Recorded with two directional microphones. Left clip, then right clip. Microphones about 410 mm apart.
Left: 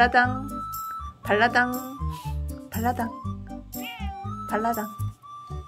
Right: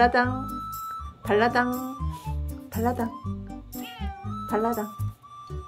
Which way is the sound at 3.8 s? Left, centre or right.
Centre.